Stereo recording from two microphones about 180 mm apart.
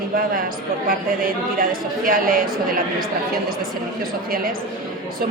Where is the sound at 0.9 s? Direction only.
55° right (ahead or behind).